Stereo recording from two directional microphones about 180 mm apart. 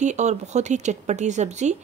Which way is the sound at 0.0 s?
40° right (ahead or behind).